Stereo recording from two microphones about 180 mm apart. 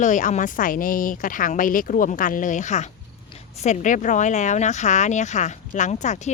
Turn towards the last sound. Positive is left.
turn(degrees=40)  # may be behind; listen again after turning